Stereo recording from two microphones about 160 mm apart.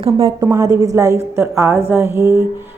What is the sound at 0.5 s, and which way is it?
A woman's voice, 20° right (ahead or behind).